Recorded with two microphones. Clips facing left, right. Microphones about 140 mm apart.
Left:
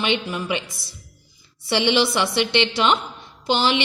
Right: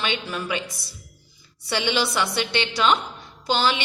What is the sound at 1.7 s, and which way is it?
A woman's voice, 25° left (ahead or behind).